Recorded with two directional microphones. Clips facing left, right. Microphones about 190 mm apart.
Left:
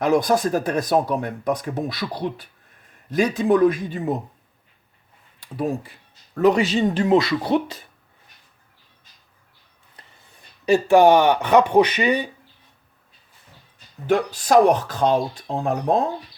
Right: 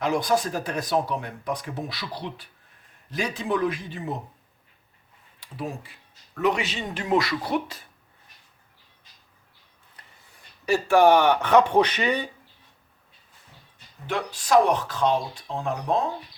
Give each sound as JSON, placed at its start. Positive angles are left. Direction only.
{"t": 0.0, "sound": "speech", "side_deg": 45}
{"t": 6.4, "sound": "speech", "side_deg": 35}
{"t": 10.7, "sound": "speech", "side_deg": 20}
{"t": 14.1, "sound": "speech", "side_deg": 40}